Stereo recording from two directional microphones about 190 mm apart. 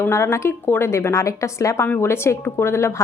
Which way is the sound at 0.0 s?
15° left (ahead or behind).